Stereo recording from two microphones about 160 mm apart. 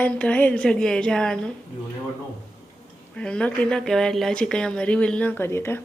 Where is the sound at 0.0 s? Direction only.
10° left (ahead or behind).